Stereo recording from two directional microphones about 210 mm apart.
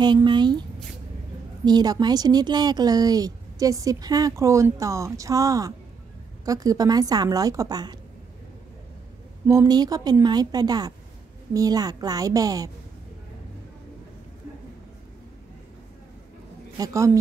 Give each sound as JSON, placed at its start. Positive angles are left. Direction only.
{"t": 0.0, "sound": "a woman's voice", "side_deg": -20}
{"t": 9.5, "sound": "a woman's voice", "side_deg": -15}
{"t": 16.7, "sound": "speech", "side_deg": -15}